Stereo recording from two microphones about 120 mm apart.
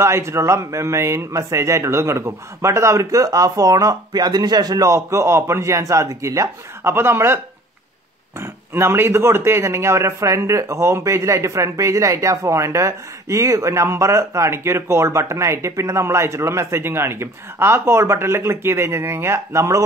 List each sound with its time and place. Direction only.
0.0 s speech: 20° right (ahead or behind)
8.4 s speech: 20° right (ahead or behind)